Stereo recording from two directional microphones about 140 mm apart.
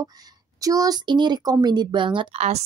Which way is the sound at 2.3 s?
50° right (ahead or behind).